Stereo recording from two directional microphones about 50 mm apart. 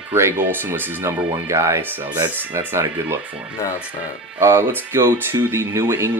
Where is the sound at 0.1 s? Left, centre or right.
Right.